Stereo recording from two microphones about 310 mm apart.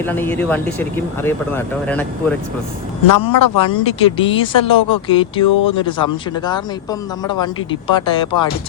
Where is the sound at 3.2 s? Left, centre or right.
Left.